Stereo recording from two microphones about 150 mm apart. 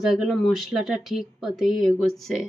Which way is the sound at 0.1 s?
Centre (ahead or behind).